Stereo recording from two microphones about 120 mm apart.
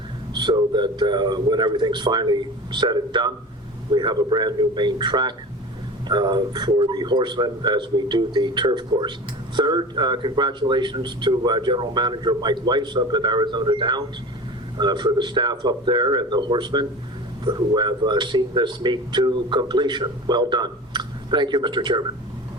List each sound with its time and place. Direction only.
0.3 s speech: 40° right (ahead or behind)